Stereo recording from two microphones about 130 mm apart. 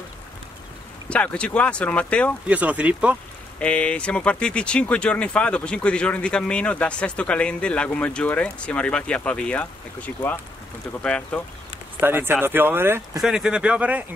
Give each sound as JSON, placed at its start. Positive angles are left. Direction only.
{"t": 1.0, "sound": "speech", "side_deg": 10}
{"t": 2.4, "sound": "speech", "side_deg": -10}
{"t": 3.5, "sound": "speech", "side_deg": 10}
{"t": 12.0, "sound": "speech", "side_deg": -15}
{"t": 13.2, "sound": "speech", "side_deg": -5}